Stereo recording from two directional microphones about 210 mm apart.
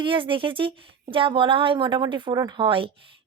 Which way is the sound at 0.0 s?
25° right (ahead or behind).